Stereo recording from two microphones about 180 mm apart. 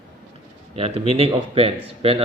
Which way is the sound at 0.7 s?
35° right (ahead or behind).